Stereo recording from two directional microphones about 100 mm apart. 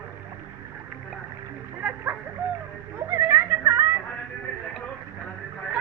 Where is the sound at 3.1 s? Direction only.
25° right (ahead or behind).